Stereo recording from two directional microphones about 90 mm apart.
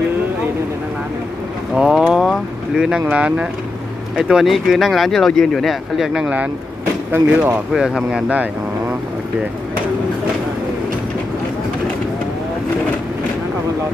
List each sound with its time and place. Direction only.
1.8 s a sound: 5° right (ahead or behind)
2.7 s speech: 10° right (ahead or behind)
7.2 s speech: 15° right (ahead or behind)